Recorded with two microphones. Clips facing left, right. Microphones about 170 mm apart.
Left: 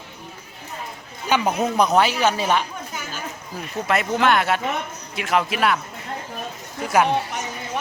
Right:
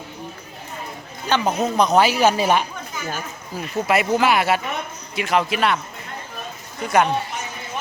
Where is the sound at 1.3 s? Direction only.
10° left (ahead or behind).